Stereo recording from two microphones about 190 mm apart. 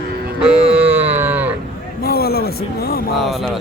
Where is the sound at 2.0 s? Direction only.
55° left (ahead or behind).